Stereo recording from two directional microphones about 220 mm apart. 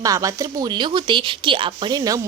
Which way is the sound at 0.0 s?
15° right (ahead or behind).